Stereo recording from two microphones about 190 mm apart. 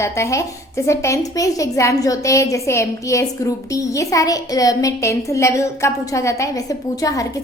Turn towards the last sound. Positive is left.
turn(degrees=20)  # may be behind; listen again after turning